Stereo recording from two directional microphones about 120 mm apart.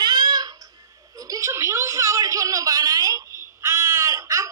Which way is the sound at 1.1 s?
30° right (ahead or behind).